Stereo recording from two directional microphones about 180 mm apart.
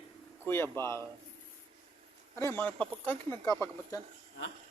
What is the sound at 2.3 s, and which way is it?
Speech, 15° left (ahead or behind).